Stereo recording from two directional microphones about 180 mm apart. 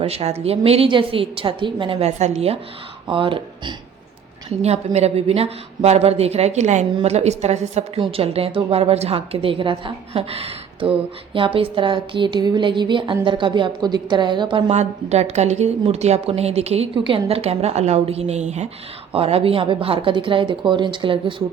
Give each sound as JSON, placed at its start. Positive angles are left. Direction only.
{"t": 0.0, "sound": "a woman's voice", "side_deg": -35}